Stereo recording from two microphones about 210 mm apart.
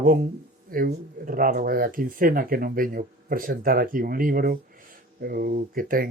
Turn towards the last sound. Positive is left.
turn(degrees=-45)  # may be behind; listen again after turning